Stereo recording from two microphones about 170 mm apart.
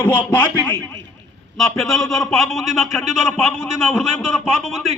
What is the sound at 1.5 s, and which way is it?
A man's voice, centre (ahead or behind).